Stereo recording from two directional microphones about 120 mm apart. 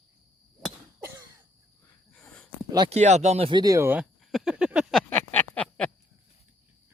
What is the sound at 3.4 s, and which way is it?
Speech, 35° right (ahead or behind).